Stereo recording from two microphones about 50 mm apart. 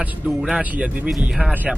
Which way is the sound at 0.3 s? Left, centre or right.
Centre.